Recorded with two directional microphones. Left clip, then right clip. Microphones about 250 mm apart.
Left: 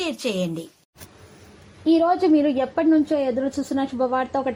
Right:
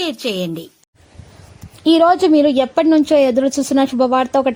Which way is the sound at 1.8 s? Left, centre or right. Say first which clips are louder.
Right 7 dB; right.